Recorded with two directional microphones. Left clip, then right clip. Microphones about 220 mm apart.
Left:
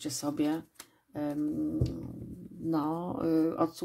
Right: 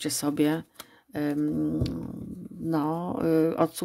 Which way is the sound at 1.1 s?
40° right (ahead or behind).